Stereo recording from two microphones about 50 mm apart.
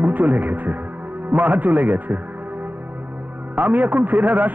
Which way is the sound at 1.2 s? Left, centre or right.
Right.